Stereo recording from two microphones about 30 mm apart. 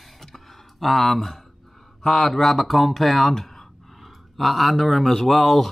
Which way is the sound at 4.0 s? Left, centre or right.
Centre.